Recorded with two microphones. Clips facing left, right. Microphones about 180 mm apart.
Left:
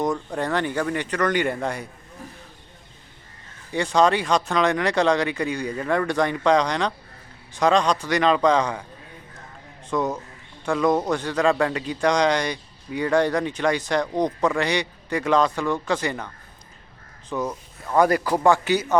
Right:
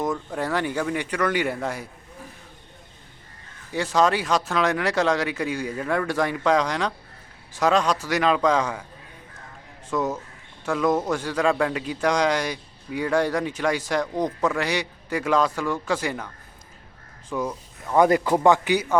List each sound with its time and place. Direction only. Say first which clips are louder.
0.0 s speech: left 2 dB; 5° right (ahead or behind)
3.7 s speech: left 2 dB; 5° right (ahead or behind)
9.9 s speech: left 1 dB; 5° right (ahead or behind)